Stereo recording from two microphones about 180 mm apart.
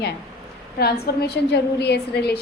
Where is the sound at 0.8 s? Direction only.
60° left (ahead or behind).